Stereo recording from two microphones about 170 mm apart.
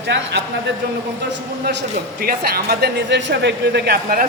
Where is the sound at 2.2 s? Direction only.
65° right (ahead or behind).